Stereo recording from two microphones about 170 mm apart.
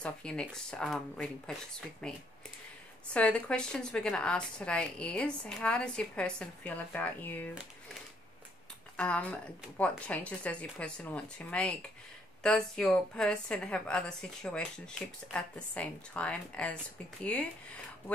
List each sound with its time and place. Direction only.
0.0 s a woman's voice: 5° left (ahead or behind)
8.9 s a woman's voice: 5° left (ahead or behind)